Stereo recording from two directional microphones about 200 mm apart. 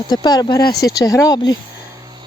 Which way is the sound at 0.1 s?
20° left (ahead or behind).